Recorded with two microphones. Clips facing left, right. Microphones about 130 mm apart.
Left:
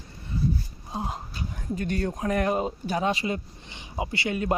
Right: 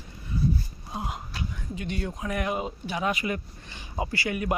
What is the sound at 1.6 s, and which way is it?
Speech, 45° left (ahead or behind).